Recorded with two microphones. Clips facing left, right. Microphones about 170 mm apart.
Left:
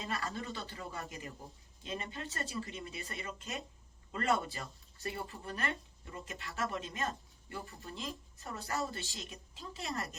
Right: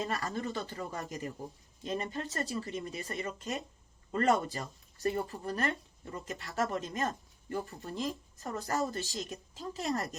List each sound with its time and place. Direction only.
0.0 s speech: 40° right (ahead or behind)